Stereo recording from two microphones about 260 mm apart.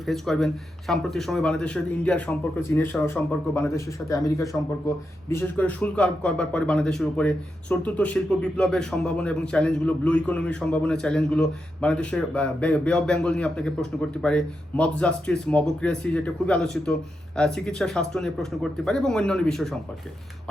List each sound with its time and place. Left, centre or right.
0.0 s speech: centre